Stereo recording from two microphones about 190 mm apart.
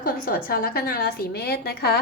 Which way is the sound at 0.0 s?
50° left (ahead or behind).